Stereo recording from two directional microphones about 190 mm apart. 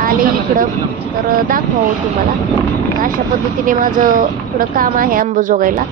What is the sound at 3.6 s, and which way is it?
Speech, 45° right (ahead or behind).